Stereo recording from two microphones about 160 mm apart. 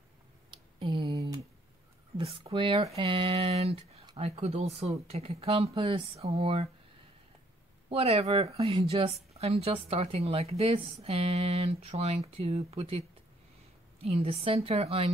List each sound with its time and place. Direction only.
0.5 s a sound: 30° right (ahead or behind)
2.1 s speech: 35° right (ahead or behind)
7.9 s speech: 40° right (ahead or behind)
14.0 s speech: 40° right (ahead or behind)